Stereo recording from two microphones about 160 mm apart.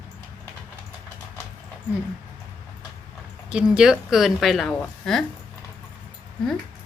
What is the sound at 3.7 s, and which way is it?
Speech, 5° right (ahead or behind).